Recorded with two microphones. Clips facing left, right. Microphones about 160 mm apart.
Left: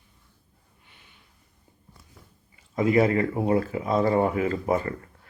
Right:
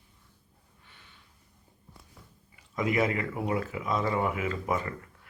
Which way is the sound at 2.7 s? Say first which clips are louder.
Left 7 dB; 35° left (ahead or behind).